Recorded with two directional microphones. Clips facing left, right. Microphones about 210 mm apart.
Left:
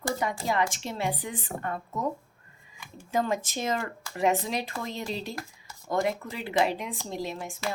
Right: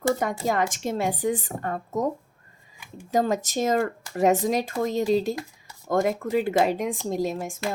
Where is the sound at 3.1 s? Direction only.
40° right (ahead or behind).